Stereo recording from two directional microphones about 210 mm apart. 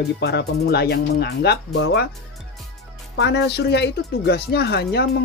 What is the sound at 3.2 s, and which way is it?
Speech, 55° left (ahead or behind).